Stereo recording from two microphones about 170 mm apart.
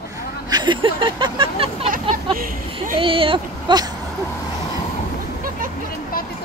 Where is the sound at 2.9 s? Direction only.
30° right (ahead or behind).